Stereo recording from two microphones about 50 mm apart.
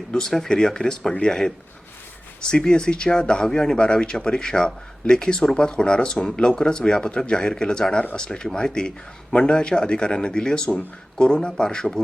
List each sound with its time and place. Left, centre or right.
0.1 s speech: centre